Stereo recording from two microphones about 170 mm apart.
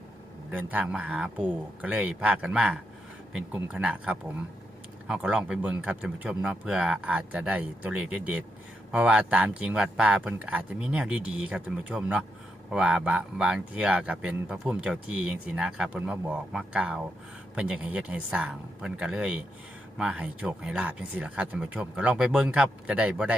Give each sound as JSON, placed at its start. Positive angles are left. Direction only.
{"t": 0.5, "sound": "speech", "side_deg": -10}